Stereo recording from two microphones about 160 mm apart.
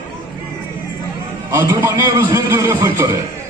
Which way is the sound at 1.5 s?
15° right (ahead or behind).